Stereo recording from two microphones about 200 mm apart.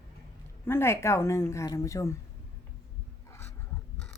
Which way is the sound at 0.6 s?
10° left (ahead or behind).